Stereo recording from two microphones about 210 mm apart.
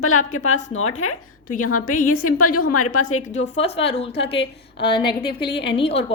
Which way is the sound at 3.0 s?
35° left (ahead or behind).